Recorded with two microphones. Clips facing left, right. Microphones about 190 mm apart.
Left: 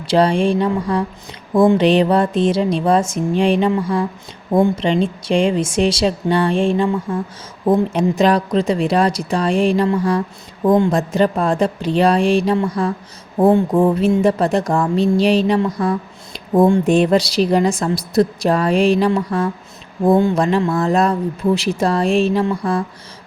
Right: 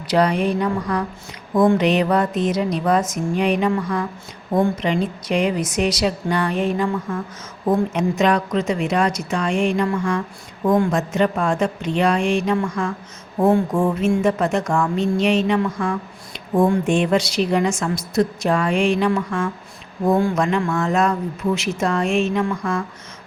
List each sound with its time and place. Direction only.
0.1 s a woman's voice: 30° left (ahead or behind)